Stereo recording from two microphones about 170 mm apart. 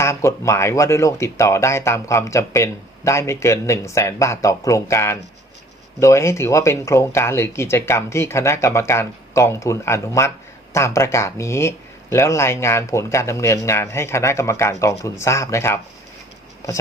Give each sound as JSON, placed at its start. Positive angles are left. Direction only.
{"t": 0.0, "sound": "speech", "side_deg": 15}